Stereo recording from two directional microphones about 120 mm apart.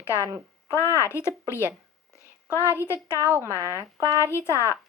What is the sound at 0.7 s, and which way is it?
A woman's voice, 25° left (ahead or behind).